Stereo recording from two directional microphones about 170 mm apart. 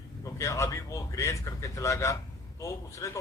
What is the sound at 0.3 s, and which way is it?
Speech, 15° left (ahead or behind).